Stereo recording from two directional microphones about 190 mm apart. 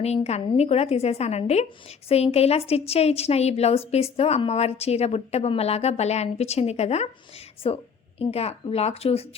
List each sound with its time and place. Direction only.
0.0 s a woman's voice: 35° left (ahead or behind)